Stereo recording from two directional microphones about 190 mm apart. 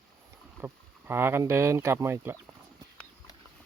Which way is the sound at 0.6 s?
10° right (ahead or behind).